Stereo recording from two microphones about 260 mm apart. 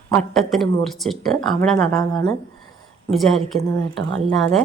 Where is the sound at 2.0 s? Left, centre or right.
Centre.